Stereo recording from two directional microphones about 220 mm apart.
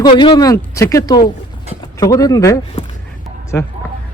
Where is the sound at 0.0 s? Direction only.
20° left (ahead or behind).